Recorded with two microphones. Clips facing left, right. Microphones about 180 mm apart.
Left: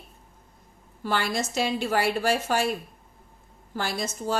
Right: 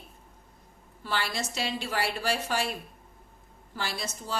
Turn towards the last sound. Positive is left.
turn(degrees=50)  # may be behind; listen again after turning